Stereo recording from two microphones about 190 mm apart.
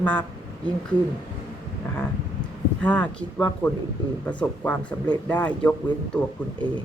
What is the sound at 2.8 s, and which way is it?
Speech, 5° left (ahead or behind).